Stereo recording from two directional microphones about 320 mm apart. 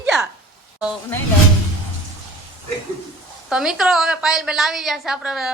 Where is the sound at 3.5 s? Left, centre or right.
Centre.